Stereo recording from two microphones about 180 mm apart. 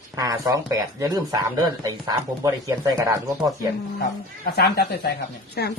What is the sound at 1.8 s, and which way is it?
Speech, 20° right (ahead or behind).